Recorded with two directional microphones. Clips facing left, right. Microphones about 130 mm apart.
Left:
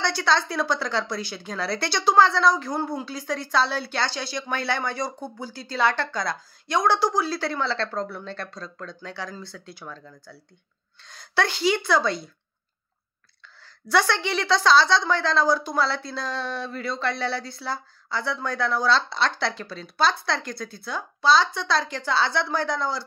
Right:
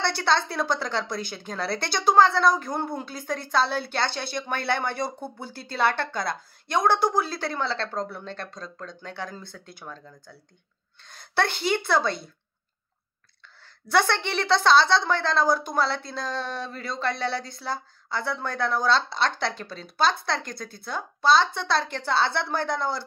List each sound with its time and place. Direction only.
0.2 s speech: 55° right (ahead or behind)
10.0 s speech: 15° right (ahead or behind)
11.4 s speech: 55° right (ahead or behind)
13.8 s speech: 50° right (ahead or behind)